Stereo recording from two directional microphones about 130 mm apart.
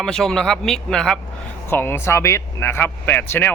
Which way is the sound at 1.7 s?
15° left (ahead or behind).